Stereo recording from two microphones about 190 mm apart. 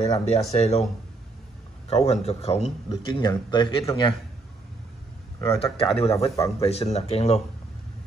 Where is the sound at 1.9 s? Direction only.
30° left (ahead or behind).